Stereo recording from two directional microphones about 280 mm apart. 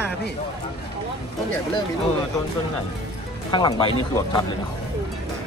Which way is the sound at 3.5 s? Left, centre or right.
Centre.